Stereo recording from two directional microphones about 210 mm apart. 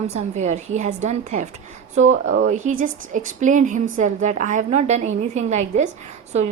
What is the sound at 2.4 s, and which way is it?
A woman's voice, 35° right (ahead or behind).